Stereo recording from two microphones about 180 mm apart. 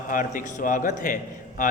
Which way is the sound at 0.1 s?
50° left (ahead or behind).